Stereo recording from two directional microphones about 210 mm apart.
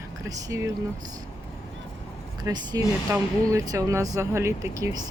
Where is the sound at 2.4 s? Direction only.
20° right (ahead or behind).